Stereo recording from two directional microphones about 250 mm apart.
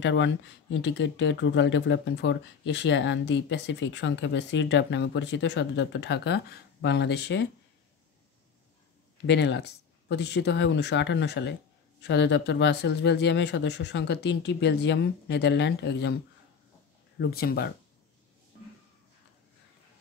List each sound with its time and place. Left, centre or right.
0.0 s speech: left
9.2 s speech: left
17.2 s speech: left